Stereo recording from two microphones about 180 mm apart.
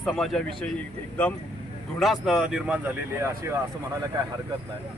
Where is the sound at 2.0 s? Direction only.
Centre (ahead or behind).